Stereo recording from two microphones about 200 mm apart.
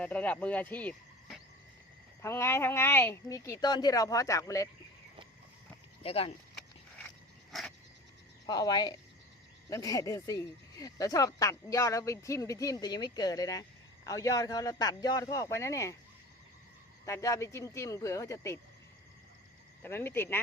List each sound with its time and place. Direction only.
0.0 s speech: 5° left (ahead or behind)
6.0 s speech: 30° left (ahead or behind)
8.4 s speech: 20° left (ahead or behind)
17.1 s speech: 15° left (ahead or behind)
19.8 s speech: 10° left (ahead or behind)